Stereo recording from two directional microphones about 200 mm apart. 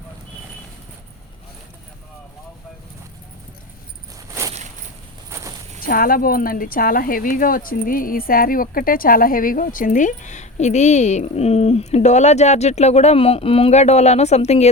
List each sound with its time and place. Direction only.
4.4 s crushing: 15° right (ahead or behind)
5.3 s a sound: 15° right (ahead or behind)
5.8 s speech: 45° left (ahead or behind)